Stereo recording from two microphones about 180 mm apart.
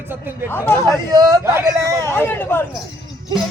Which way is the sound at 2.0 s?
10° left (ahead or behind).